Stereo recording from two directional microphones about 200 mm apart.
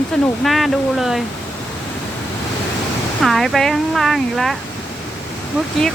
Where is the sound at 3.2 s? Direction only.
Centre (ahead or behind).